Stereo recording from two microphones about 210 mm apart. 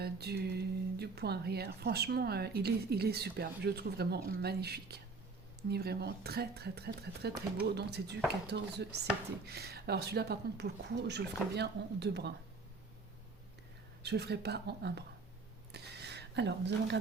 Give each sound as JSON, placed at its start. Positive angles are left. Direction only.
{"t": 0.0, "sound": "speech", "side_deg": -50}
{"t": 14.0, "sound": "speech", "side_deg": -50}
{"t": 15.7, "sound": "a sound", "side_deg": -50}